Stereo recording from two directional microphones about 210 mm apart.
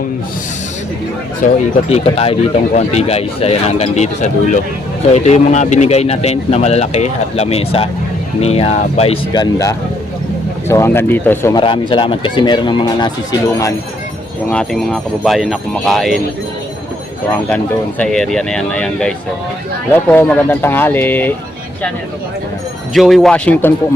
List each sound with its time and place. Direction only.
1.4 s speech: 40° left (ahead or behind); by 11.5 s 10° left (ahead or behind)
11.5 s speech: 25° left (ahead or behind)
14.5 s speech: 5° left (ahead or behind)
17.5 s speech: 5° left (ahead or behind)
23.0 s speech: centre (ahead or behind)